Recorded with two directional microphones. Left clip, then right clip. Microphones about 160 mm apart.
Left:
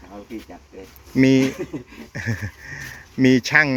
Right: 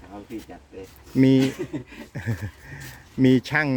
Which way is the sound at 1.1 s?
15° right (ahead or behind).